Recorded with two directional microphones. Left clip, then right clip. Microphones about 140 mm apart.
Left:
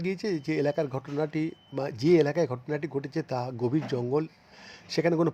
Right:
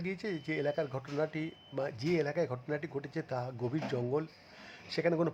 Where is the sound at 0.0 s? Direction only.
30° left (ahead or behind).